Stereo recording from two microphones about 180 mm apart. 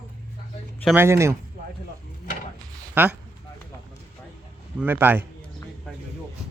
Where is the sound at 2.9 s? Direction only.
10° right (ahead or behind).